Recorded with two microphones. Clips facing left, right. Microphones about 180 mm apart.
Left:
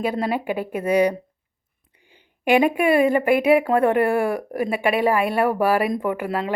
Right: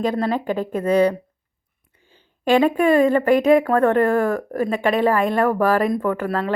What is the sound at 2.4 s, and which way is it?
A woman's voice, 15° left (ahead or behind).